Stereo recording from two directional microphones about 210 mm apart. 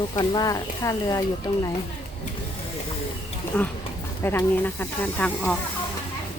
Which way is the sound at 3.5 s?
10° left (ahead or behind).